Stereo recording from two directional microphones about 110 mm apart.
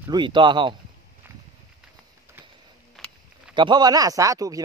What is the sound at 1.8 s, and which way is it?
Horse, 5° right (ahead or behind).